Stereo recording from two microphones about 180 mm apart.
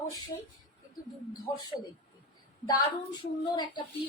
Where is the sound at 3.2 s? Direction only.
25° left (ahead or behind).